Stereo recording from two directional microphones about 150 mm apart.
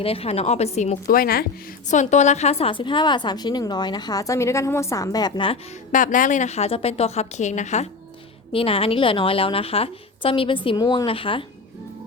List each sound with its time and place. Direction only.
0.0 s a woman's voice: 40° left (ahead or behind)
1.0 s speech: 80° left
1.9 s a woman's voice: 50° left (ahead or behind); by 5.5 s 30° left (ahead or behind)
5.9 s a woman's voice: 60° left (ahead or behind)
8.5 s a woman's voice: 40° left (ahead or behind)